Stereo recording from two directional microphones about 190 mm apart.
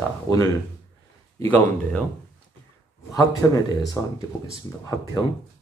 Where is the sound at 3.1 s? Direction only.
20° left (ahead or behind).